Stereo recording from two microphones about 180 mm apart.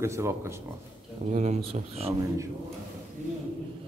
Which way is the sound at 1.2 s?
40° right (ahead or behind).